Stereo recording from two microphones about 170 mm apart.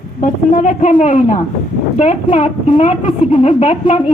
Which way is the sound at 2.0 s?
40° left (ahead or behind).